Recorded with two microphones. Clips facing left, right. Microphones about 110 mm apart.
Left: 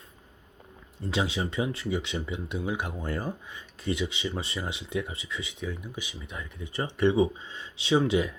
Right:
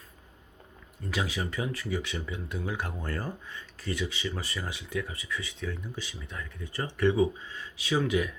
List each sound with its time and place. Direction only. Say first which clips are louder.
1.0 s speech: left 3 dB; 25° left (ahead or behind)